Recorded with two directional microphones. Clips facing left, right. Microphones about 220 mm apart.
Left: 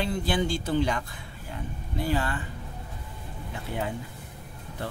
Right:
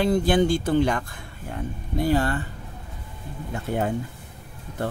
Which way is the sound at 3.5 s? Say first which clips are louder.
Right 7 dB; 45° right (ahead or behind).